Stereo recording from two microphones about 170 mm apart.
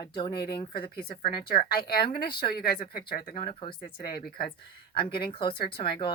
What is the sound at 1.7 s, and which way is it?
Speech, 60° left (ahead or behind).